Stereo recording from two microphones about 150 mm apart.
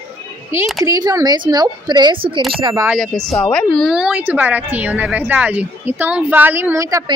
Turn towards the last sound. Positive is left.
turn(degrees=-20)  # may be behind; listen again after turning